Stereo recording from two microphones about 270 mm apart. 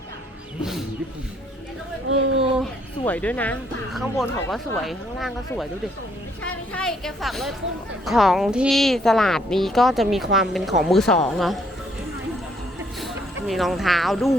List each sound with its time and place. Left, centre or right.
0.6 s wild animals: centre
2.0 s speech: right
3.1 s speech: centre
13.5 s speech: centre